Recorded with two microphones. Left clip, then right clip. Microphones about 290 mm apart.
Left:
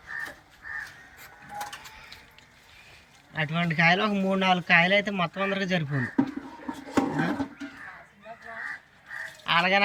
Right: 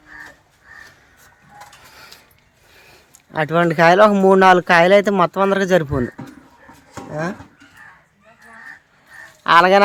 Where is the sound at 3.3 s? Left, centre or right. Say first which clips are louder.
Right 12 dB; centre.